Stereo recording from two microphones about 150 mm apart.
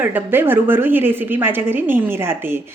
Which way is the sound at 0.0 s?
15° right (ahead or behind).